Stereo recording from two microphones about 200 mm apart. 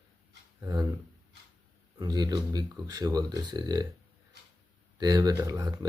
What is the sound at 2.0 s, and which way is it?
Speech, 20° right (ahead or behind).